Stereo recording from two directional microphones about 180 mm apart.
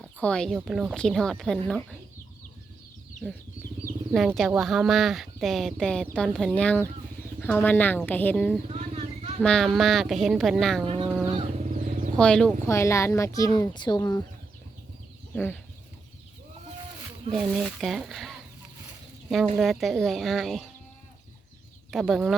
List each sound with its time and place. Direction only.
0.0 s speech: 5° left (ahead or behind)
4.4 s speech: centre (ahead or behind)
8.6 s vehicle: 35° right (ahead or behind)
9.4 s speech: 5° left (ahead or behind)
10.8 s a sound: 30° right (ahead or behind)
11.3 s motorcycle: 35° right (ahead or behind)
12.1 s speech: 5° left (ahead or behind)
12.6 s speech: 15° left (ahead or behind)
17.3 s speech: centre (ahead or behind)
19.5 s speech: centre (ahead or behind)
21.8 s speech: centre (ahead or behind)